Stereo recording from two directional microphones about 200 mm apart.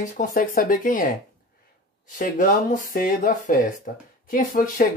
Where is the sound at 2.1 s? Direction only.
40° left (ahead or behind).